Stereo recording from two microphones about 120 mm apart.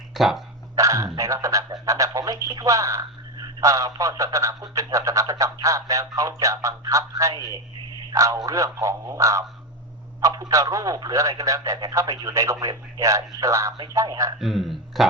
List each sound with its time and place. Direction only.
0.1 s speech: centre (ahead or behind)
0.8 s a man's voice: 30° right (ahead or behind)
14.3 s a man's voice: centre (ahead or behind)